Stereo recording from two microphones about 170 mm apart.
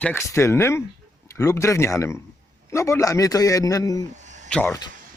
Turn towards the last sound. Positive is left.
turn(degrees=10)  # may be behind; listen again after turning